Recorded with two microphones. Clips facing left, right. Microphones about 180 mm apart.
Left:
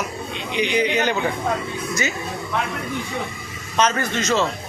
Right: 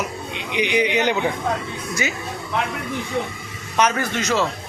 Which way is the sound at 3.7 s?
10° right (ahead or behind).